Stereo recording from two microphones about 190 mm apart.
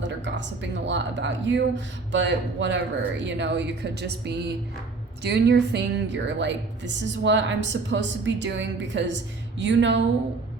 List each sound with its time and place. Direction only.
0.3 s a woman's voice: 70° right (ahead or behind)